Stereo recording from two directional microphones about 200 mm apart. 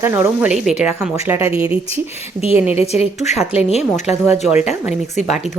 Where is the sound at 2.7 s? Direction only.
30° left (ahead or behind).